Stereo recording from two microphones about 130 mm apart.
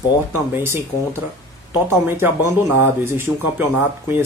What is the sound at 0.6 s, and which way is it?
Speech, 20° right (ahead or behind).